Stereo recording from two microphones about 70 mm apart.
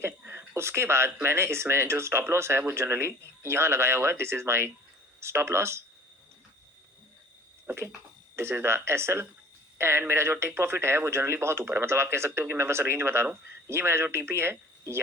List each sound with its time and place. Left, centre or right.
0.0 s speech: right
8.4 s speech: right